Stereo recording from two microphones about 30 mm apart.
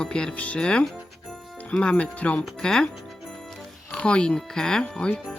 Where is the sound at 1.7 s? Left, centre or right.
Left.